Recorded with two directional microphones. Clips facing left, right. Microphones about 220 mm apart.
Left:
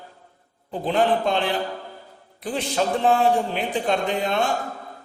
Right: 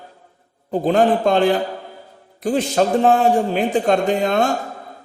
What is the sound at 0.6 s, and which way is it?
A man's voice, 45° right (ahead or behind).